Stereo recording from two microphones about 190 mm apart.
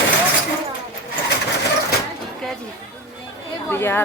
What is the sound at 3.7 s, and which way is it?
Speech, 10° left (ahead or behind).